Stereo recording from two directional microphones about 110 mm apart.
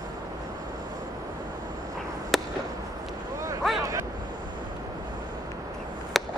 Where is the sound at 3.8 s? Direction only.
30° right (ahead or behind).